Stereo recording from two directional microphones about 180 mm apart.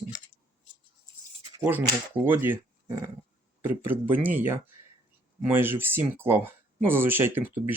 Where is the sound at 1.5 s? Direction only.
10° right (ahead or behind).